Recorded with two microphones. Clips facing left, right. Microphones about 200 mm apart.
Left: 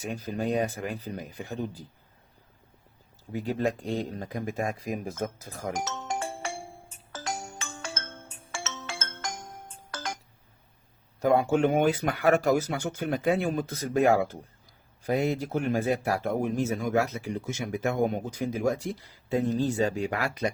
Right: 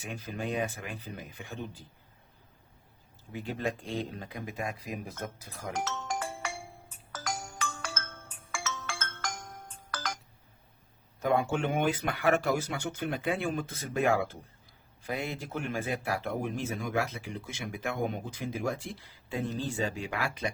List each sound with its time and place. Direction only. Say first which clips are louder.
0.0 s speech: left 6 dB; 40° left (ahead or behind)
3.3 s a man's voice: left 6 dB; 40° left (ahead or behind)
5.7 s music: right 1 dB; 15° left (ahead or behind)
11.2 s a man's voice: left 6 dB; 40° left (ahead or behind)